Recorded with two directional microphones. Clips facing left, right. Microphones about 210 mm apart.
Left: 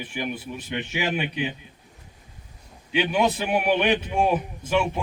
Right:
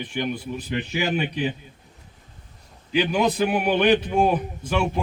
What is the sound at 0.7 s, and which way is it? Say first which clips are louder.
Speech: right 2 dB; 35° right (ahead or behind).